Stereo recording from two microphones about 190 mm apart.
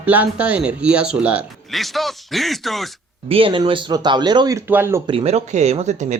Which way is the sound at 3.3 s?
30° right (ahead or behind).